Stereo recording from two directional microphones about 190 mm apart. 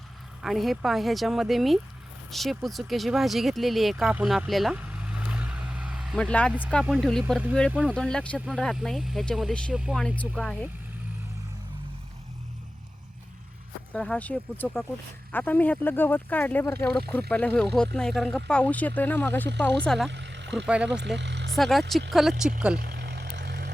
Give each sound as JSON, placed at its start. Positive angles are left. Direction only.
{"t": 0.4, "sound": "speech", "side_deg": 0}
{"t": 7.9, "sound": "speech", "side_deg": 5}
{"t": 13.9, "sound": "speech", "side_deg": 5}
{"t": 20.1, "sound": "vehicle", "side_deg": -65}
{"t": 21.5, "sound": "speech", "side_deg": 0}
{"t": 22.8, "sound": "vehicle", "side_deg": -60}